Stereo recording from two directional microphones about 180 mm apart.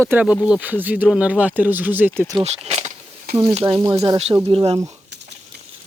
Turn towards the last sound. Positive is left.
turn(degrees=-30)  # may be behind; listen again after turning